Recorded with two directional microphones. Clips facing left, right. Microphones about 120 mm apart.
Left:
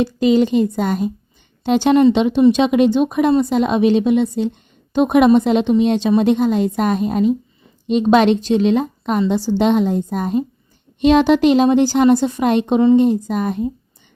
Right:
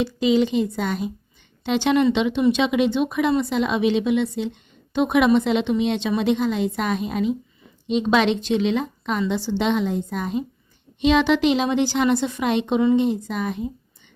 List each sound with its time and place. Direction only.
0.0 s a woman's voice: 45° left (ahead or behind)